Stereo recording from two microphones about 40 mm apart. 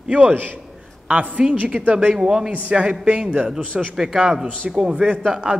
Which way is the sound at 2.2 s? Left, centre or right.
Centre.